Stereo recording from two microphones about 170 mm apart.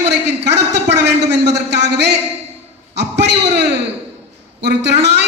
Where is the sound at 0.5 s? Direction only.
85° right.